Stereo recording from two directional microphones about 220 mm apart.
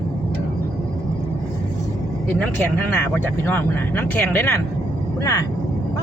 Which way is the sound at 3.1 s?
10° left (ahead or behind).